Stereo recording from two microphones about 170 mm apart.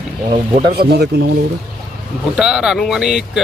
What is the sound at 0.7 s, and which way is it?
Speech, 70° right (ahead or behind).